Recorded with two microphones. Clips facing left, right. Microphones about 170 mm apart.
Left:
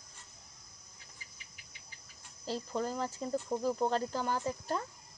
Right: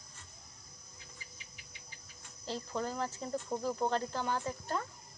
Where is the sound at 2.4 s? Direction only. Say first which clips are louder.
Left 2 dB; 5° left (ahead or behind).